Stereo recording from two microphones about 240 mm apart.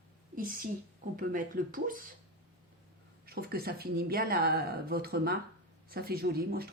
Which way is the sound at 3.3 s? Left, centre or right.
Right.